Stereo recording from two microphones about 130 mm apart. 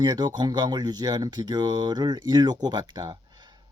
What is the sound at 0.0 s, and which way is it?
Speech, 35° right (ahead or behind).